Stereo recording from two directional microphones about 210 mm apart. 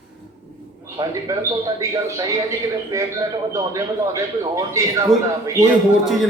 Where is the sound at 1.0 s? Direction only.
15° right (ahead or behind).